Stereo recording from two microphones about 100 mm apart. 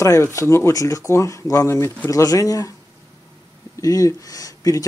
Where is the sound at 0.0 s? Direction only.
30° left (ahead or behind).